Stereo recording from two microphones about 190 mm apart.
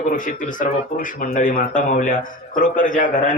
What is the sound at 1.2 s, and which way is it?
Speech, 45° left (ahead or behind).